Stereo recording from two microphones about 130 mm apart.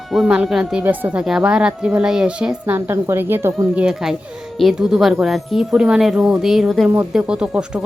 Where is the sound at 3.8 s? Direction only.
5° right (ahead or behind).